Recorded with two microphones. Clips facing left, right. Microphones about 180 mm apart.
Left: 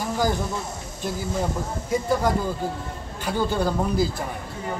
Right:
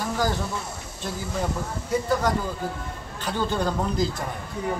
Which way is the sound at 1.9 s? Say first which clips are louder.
Left 1 dB; 10° left (ahead or behind).